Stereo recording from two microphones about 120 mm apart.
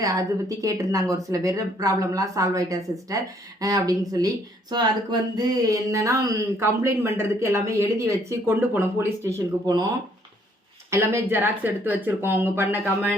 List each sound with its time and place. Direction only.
0.0 s speech: 30° right (ahead or behind)
10.9 s speech: 20° right (ahead or behind)